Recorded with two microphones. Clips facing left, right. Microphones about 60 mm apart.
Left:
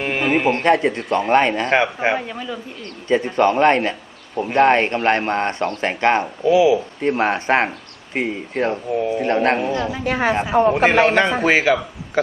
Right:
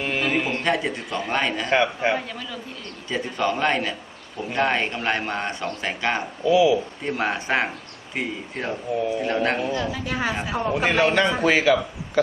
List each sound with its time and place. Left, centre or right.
0.0 s a sound: left
1.2 s speech: left
2.1 s speech: centre
3.1 s speech: left
6.6 s a woman's voice: left